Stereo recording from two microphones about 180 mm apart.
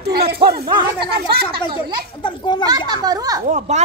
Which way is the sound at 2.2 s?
25° left (ahead or behind).